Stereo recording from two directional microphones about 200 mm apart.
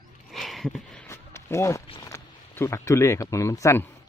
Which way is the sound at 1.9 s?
20° left (ahead or behind).